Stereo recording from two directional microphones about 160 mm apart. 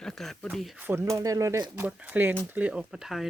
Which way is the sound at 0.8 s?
15° right (ahead or behind).